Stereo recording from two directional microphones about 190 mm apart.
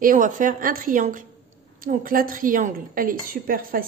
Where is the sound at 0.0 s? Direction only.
45° right (ahead or behind).